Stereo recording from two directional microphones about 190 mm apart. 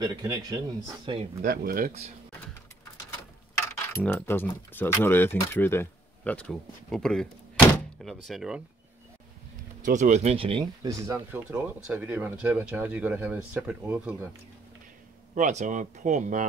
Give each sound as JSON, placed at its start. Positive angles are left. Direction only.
{"t": 0.0, "sound": "speech", "side_deg": -20}
{"t": 1.4, "sound": "speech", "side_deg": -55}
{"t": 3.6, "sound": "speech", "side_deg": 15}
{"t": 9.8, "sound": "speech", "side_deg": -40}
{"t": 15.3, "sound": "speech", "side_deg": -40}